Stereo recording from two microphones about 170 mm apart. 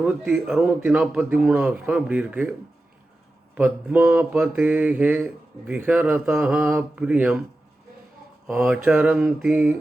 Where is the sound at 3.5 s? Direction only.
5° right (ahead or behind).